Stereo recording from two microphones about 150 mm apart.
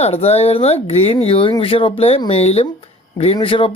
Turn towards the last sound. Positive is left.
turn(degrees=35)  # may be behind; listen again after turning